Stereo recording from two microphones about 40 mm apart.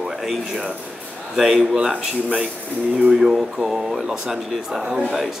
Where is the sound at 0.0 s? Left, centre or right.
Centre.